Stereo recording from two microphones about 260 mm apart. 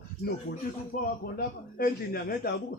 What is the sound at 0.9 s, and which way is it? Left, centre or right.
A man's voice, left.